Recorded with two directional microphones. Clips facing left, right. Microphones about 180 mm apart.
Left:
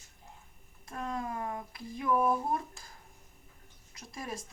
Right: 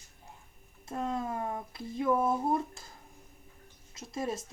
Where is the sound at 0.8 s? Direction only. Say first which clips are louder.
Right 3 dB; 25° right (ahead or behind).